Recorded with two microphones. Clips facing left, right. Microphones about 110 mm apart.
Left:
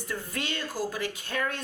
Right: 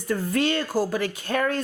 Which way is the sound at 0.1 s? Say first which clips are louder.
Right 12 dB; 55° right (ahead or behind).